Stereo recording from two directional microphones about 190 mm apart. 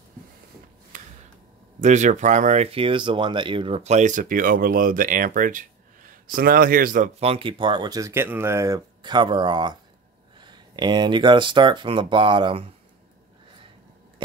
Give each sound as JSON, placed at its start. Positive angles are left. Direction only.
{"t": 0.9, "sound": "a sound", "side_deg": -40}
{"t": 1.8, "sound": "speech", "side_deg": -40}
{"t": 7.2, "sound": "speech", "side_deg": -30}